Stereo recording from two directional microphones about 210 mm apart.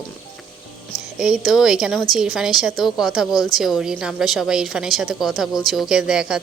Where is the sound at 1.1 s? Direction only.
5° right (ahead or behind).